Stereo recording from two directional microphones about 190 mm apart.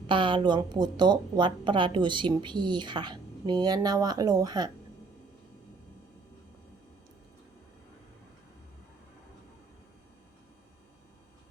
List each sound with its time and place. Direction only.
0.1 s a woman's voice: 25° right (ahead or behind)